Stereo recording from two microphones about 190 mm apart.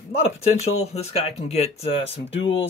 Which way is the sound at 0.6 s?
35° left (ahead or behind).